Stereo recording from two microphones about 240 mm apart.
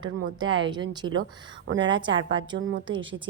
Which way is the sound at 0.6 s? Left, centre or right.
Centre.